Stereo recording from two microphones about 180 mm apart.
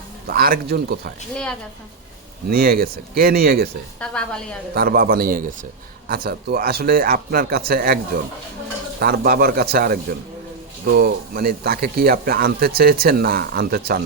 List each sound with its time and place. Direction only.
0.3 s speech: 55° right (ahead or behind)
2.5 s speech: 55° right (ahead or behind)
4.0 s a woman's voice: 5° left (ahead or behind)
4.7 s a man's voice: 55° right (ahead or behind)
9.0 s speech: 60° right (ahead or behind)